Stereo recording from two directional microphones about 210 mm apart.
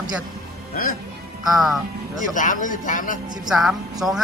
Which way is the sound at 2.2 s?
40° left (ahead or behind).